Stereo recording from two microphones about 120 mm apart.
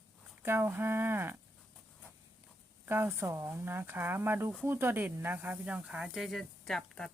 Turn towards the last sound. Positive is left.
turn(degrees=5)  # may be behind; listen again after turning